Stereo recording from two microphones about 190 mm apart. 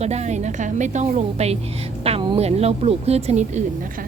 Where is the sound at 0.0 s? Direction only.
35° right (ahead or behind).